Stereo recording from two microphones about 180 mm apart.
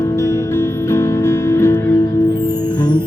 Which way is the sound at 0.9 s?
15° left (ahead or behind).